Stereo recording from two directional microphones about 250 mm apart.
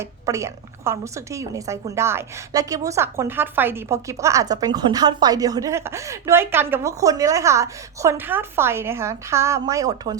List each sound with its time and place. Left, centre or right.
0.0 s a woman's voice: centre